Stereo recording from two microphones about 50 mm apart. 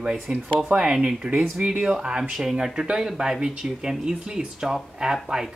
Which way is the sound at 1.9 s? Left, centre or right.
Centre.